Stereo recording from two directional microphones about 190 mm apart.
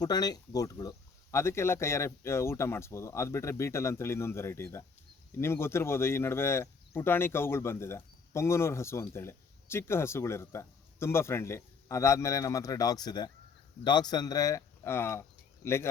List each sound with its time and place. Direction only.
0.0 s speech: 20° left (ahead or behind)